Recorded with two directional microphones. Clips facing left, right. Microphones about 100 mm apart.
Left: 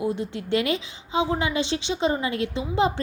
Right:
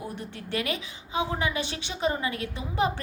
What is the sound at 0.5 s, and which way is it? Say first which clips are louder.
A woman's voice: left 6 dB; 25° left (ahead or behind).